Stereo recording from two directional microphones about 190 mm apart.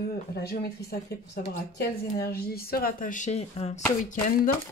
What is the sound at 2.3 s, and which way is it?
Speech, 55° left (ahead or behind).